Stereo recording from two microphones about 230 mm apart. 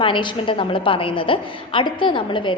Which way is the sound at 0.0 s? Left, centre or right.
Left.